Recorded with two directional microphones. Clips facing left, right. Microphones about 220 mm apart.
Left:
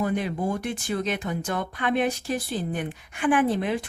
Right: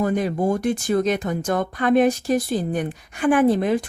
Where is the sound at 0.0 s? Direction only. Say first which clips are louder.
Right 5 dB; 40° right (ahead or behind).